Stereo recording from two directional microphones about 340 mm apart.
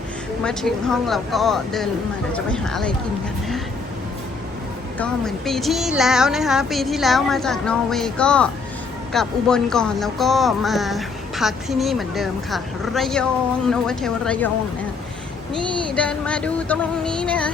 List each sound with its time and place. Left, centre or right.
0.4 s speech: centre
4.9 s speech: centre
15.9 s speech: centre